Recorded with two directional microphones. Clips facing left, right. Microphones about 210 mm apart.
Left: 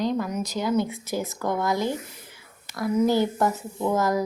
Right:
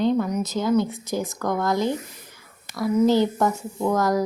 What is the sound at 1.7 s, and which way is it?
Speech, 20° right (ahead or behind).